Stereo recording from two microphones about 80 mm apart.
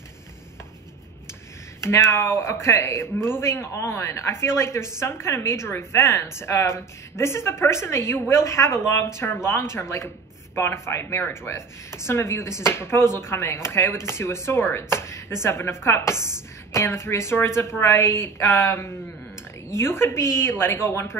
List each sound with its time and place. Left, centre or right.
1.8 s speech: left